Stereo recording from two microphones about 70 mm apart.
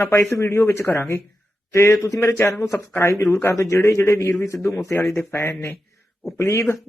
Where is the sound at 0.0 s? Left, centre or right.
Left.